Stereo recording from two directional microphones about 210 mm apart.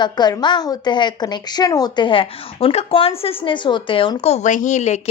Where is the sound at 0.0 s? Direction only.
20° left (ahead or behind).